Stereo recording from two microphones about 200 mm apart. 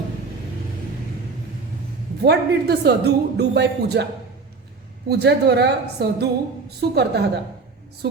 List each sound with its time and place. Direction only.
2.2 s speech: 55° right (ahead or behind)
5.0 s a woman's voice: 55° right (ahead or behind)